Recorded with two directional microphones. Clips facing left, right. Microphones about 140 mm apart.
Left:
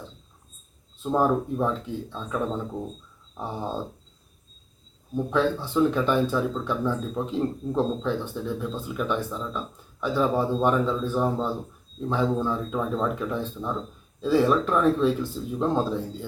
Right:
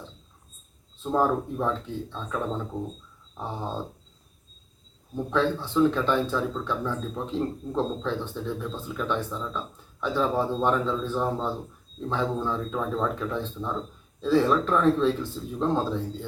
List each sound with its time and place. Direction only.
1.0 s speech: 10° left (ahead or behind)
5.1 s speech: 10° left (ahead or behind)